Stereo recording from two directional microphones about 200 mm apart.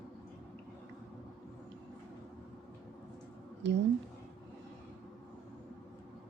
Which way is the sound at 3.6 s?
60° right (ahead or behind).